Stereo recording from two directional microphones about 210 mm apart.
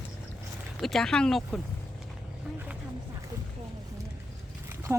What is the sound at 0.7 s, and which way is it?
Speech, centre (ahead or behind).